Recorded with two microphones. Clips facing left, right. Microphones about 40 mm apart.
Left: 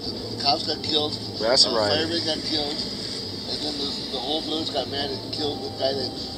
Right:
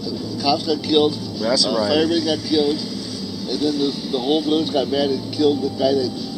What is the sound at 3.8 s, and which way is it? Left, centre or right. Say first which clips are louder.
Speech: right 8 dB; centre.